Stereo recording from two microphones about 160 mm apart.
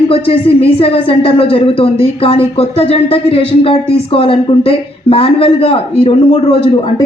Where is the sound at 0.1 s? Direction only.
35° left (ahead or behind).